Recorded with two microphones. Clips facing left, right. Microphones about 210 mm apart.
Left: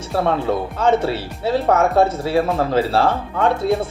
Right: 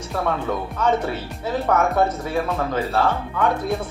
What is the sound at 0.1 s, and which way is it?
Speech, 30° left (ahead or behind).